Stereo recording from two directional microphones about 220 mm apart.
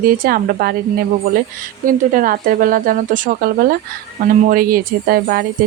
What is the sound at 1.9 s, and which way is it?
Speech, 40° right (ahead or behind).